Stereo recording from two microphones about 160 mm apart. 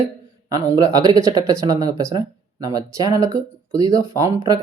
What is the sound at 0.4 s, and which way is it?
Speech, 20° right (ahead or behind).